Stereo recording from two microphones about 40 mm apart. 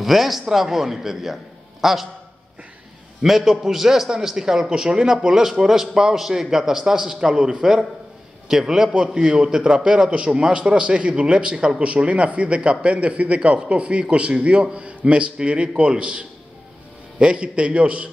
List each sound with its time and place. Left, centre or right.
0.0 s a man's voice: centre
3.3 s a man's voice: centre; by 18.1 s right